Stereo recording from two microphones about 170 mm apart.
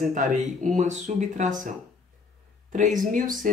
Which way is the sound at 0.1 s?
45° right (ahead or behind).